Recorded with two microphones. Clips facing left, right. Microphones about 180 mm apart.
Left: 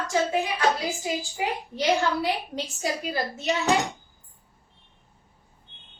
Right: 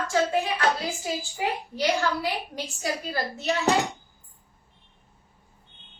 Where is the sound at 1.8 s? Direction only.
20° left (ahead or behind).